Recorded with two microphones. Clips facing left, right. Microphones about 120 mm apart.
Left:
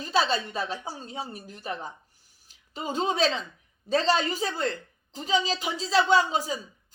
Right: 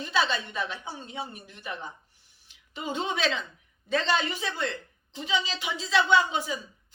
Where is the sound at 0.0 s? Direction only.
35° left (ahead or behind).